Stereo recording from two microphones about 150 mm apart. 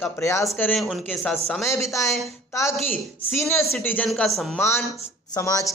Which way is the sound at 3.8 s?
10° left (ahead or behind).